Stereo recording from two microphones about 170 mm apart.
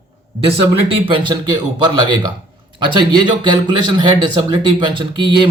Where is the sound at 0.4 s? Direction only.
30° right (ahead or behind).